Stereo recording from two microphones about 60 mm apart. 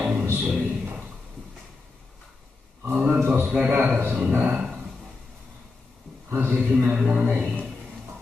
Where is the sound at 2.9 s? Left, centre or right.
Centre.